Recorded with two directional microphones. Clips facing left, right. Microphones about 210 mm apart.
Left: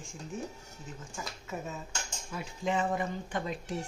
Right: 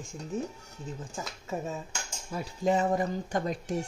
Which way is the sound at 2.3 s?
40° right (ahead or behind).